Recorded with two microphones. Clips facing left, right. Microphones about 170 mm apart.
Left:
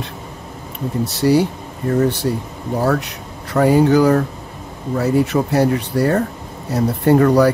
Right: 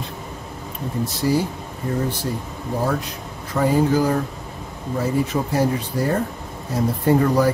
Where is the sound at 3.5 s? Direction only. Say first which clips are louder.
Left 5 dB; 70° left (ahead or behind).